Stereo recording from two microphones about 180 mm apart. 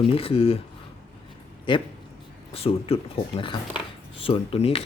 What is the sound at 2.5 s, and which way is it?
Speech, 35° left (ahead or behind).